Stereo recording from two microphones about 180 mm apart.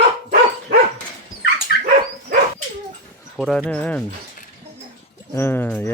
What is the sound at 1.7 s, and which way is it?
Dog, 60° left (ahead or behind).